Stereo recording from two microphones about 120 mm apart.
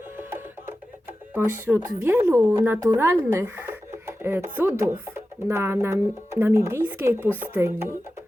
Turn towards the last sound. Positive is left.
turn(degrees=-20)  # may be behind; listen again after turning